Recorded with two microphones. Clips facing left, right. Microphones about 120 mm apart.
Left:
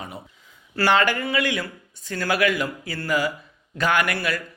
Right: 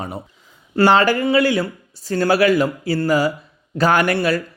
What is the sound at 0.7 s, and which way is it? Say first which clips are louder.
Speech: right 6 dB; 30° right (ahead or behind).